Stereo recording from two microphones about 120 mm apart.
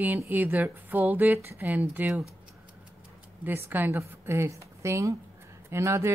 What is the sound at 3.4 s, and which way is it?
Speech, 15° right (ahead or behind).